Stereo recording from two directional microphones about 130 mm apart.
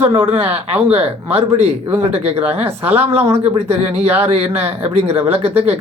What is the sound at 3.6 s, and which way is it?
A man's voice, 55° right (ahead or behind).